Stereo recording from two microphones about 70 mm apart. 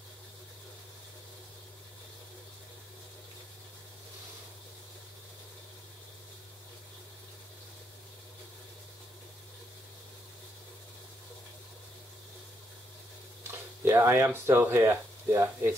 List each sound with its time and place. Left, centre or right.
13.8 s speech: right